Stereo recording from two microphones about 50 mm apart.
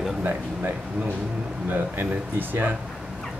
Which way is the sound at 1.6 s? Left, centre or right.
Right.